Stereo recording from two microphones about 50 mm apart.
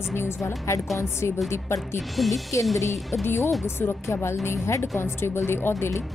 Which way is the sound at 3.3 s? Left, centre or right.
Left.